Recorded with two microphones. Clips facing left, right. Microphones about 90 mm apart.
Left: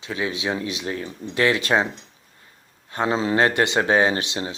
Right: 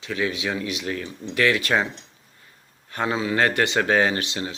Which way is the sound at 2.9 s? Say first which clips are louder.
Left 3 dB; 25° left (ahead or behind).